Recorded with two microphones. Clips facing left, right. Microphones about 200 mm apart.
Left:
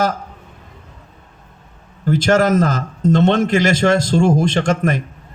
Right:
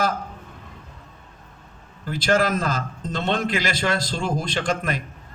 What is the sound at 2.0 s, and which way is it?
Speech, 45° left (ahead or behind).